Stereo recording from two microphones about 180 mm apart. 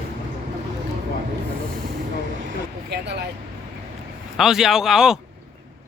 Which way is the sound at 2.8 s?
65° right (ahead or behind).